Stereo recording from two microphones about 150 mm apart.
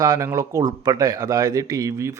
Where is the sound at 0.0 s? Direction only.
25° right (ahead or behind).